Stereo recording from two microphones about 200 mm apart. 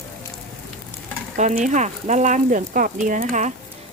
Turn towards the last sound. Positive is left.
turn(degrees=-40)  # may be behind; listen again after turning